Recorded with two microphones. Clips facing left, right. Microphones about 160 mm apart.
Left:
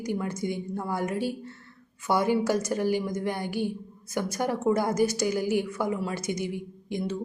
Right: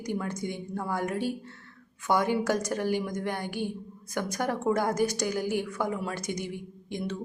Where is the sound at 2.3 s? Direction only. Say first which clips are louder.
Left 2 dB; 5° left (ahead or behind).